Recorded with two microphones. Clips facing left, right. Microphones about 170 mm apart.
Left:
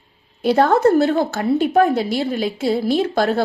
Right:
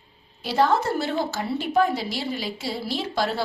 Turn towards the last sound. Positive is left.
turn(degrees=55)  # may be behind; listen again after turning